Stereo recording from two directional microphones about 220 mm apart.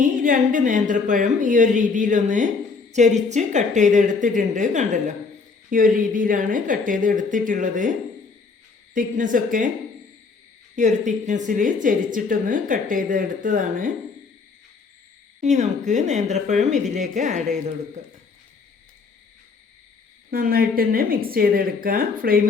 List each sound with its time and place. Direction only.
0.0 s speech: 35° right (ahead or behind)
9.0 s speech: 35° right (ahead or behind)
10.8 s speech: 35° right (ahead or behind)
15.4 s speech: 30° right (ahead or behind)
20.3 s speech: 40° right (ahead or behind)